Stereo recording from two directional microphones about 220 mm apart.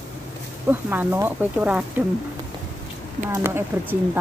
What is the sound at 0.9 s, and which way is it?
Speech, 10° right (ahead or behind).